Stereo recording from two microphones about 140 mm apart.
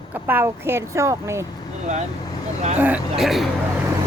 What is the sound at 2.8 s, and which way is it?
Speech, 10° right (ahead or behind).